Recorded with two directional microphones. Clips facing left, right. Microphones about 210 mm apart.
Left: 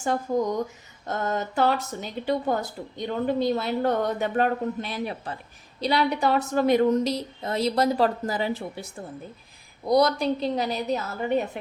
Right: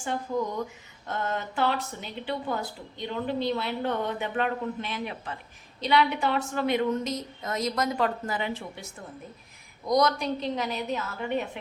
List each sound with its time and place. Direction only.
0.3 s speech: 45° left (ahead or behind)